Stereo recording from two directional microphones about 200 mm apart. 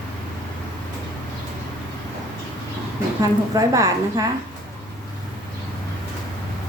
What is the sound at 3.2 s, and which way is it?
A woman's voice, 15° right (ahead or behind).